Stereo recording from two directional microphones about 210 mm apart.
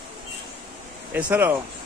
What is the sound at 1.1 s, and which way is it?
Speech, 10° right (ahead or behind).